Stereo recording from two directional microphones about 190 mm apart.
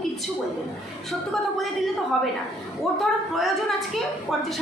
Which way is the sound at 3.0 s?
Centre (ahead or behind).